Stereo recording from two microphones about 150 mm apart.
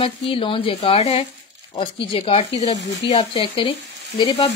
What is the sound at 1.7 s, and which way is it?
A woman's voice, 35° left (ahead or behind).